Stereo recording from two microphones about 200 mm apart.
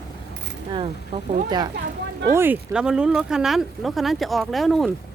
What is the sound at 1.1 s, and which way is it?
Speech, 25° right (ahead or behind).